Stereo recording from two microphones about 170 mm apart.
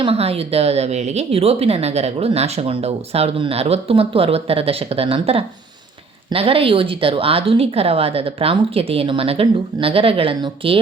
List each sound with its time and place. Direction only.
0.0 s a woman's voice: 35° right (ahead or behind)